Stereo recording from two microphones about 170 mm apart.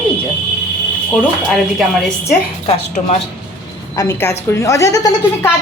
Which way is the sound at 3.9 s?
15° left (ahead or behind).